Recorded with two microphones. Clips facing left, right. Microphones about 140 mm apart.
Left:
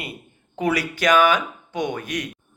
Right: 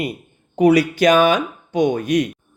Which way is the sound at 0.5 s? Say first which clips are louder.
Right 10 dB; 20° right (ahead or behind).